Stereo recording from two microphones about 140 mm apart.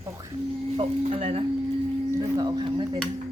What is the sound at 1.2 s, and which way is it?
Speech, 50° right (ahead or behind).